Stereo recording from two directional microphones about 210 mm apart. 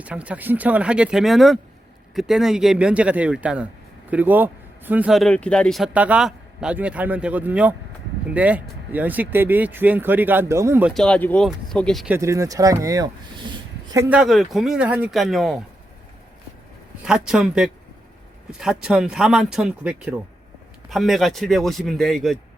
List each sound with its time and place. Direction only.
0.0 s speech: 5° right (ahead or behind)
10.9 s speech: 5° left (ahead or behind)
12.1 s speech: 15° right (ahead or behind)
17.0 s speech: 5° right (ahead or behind)